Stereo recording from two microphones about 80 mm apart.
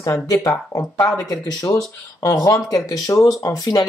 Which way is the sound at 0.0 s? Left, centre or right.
Left.